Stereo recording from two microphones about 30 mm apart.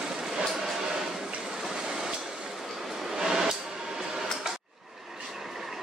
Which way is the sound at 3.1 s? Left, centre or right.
Centre.